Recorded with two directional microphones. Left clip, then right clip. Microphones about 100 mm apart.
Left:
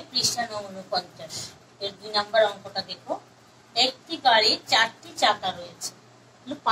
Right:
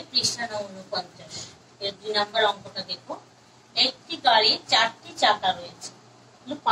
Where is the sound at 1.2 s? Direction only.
30° left (ahead or behind).